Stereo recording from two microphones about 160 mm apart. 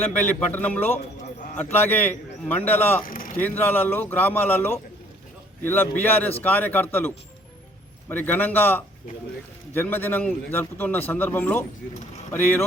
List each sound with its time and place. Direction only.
0.1 s a man's voice: 10° left (ahead or behind)
3.0 s a sound: 60° left (ahead or behind)
3.4 s a man's voice: 10° left (ahead or behind)
8.1 s a man's voice: 10° left (ahead or behind)